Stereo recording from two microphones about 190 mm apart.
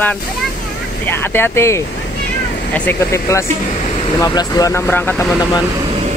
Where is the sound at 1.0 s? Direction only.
10° left (ahead or behind).